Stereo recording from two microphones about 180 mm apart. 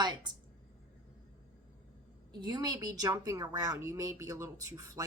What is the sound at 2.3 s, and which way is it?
A man's voice, 25° right (ahead or behind).